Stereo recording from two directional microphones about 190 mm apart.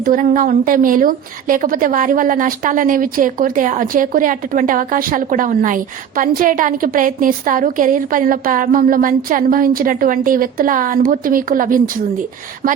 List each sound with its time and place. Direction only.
0.0 s a woman's voice: 45° right (ahead or behind)